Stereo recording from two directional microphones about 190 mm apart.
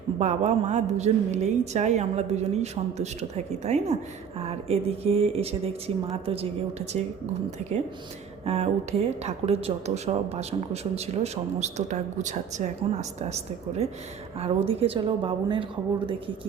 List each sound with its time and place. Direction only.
0.2 s speech: 40° right (ahead or behind)
8.4 s a woman's voice: 35° right (ahead or behind)